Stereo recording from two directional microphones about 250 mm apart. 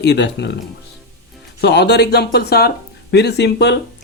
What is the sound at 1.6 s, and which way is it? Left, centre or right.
Speech, left.